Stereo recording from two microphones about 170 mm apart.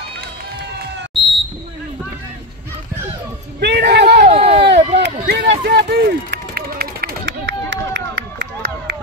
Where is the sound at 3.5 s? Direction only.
75° right (ahead or behind).